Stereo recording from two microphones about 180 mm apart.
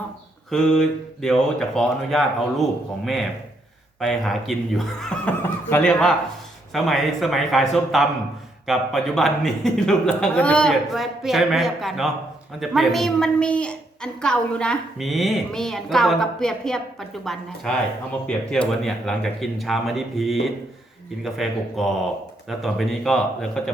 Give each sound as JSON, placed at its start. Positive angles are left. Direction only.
{"t": 0.5, "sound": "a woman's voice", "side_deg": 5}